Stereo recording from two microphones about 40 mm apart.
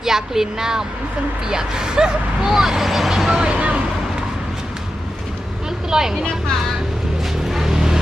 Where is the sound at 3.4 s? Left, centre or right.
Right.